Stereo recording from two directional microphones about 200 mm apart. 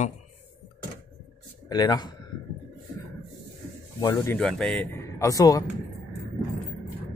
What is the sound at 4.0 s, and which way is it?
Speech, 15° left (ahead or behind).